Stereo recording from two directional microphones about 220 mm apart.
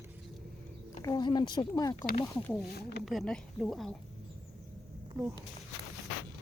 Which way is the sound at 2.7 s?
45° left (ahead or behind).